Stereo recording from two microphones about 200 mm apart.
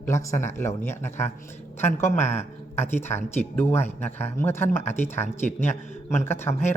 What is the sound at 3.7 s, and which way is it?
Speech, 35° left (ahead or behind).